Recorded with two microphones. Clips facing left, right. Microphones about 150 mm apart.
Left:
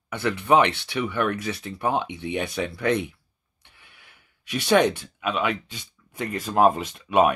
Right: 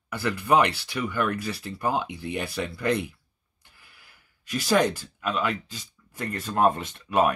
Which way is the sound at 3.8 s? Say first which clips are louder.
Left 2 dB; centre (ahead or behind).